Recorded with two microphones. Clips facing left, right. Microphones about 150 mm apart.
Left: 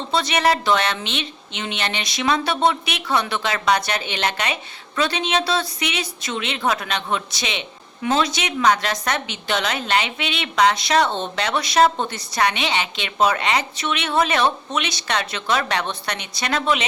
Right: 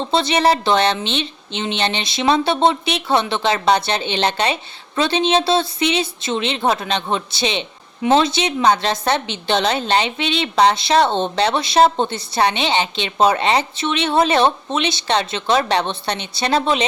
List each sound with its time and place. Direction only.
0.1 s a woman's voice: 30° right (ahead or behind)